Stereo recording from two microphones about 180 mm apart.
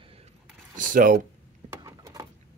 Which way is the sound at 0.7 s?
45° right (ahead or behind).